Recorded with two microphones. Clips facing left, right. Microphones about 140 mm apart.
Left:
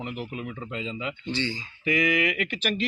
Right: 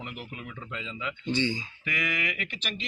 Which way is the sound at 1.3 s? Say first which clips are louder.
Right 3 dB; 15° right (ahead or behind).